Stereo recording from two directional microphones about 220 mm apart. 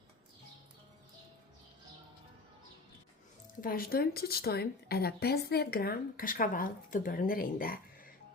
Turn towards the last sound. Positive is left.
turn(degrees=40)  # may be behind; listen again after turning